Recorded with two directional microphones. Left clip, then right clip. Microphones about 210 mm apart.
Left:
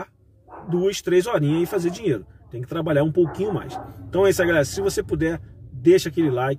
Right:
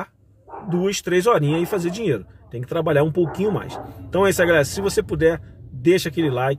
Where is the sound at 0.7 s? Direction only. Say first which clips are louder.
Left 1 dB; 10° right (ahead or behind).